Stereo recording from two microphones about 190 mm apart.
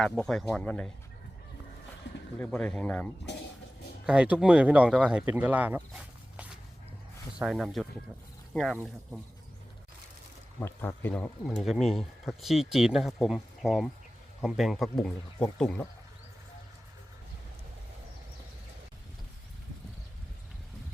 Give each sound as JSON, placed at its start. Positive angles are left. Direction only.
{"t": 0.0, "sound": "speech", "side_deg": 5}
{"t": 2.0, "sound": "a sound", "side_deg": 70}
{"t": 2.4, "sound": "speech", "side_deg": 5}
{"t": 4.0, "sound": "speech", "side_deg": -5}
{"t": 10.6, "sound": "speech", "side_deg": 10}